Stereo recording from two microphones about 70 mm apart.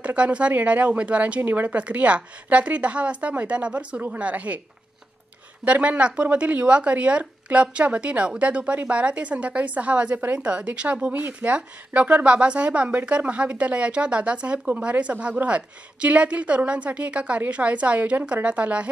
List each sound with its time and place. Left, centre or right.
0.0 s speech: centre
5.7 s speech: centre